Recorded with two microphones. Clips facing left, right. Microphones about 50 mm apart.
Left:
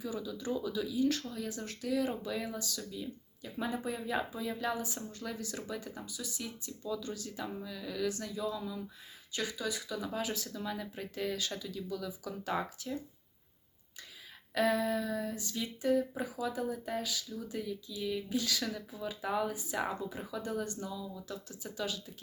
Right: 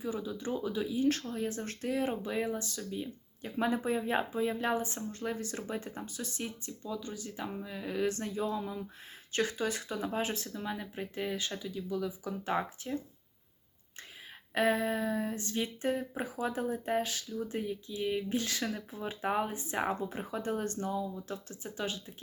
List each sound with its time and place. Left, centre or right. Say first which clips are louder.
0.0 s speech: right 2 dB; right
6.9 s speech: left 1 dB; right
14.5 s speech: right 1 dB; right
17.2 s speech: right 3 dB; right